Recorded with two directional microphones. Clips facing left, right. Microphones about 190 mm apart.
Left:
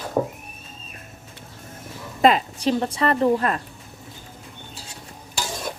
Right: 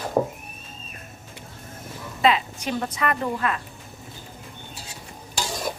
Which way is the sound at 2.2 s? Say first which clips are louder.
Left 4 dB; 45° left (ahead or behind).